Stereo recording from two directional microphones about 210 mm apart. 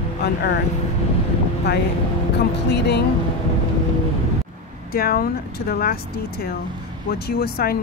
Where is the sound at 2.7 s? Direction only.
50° left (ahead or behind).